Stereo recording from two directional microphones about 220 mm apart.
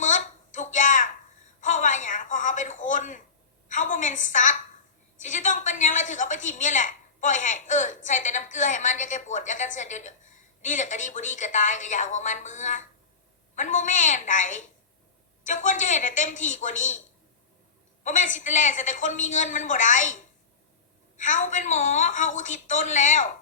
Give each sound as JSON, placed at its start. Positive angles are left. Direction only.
{"t": 0.0, "sound": "a sound", "side_deg": 35}
{"t": 5.2, "sound": "a woman's voice", "side_deg": 35}
{"t": 18.0, "sound": "a woman's voice", "side_deg": 35}
{"t": 21.2, "sound": "a woman's voice", "side_deg": 35}